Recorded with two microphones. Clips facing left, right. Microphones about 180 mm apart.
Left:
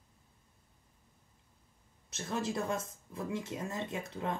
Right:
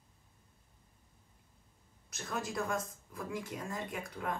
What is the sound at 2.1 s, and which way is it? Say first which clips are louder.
Speech: left 4 dB; 25° left (ahead or behind).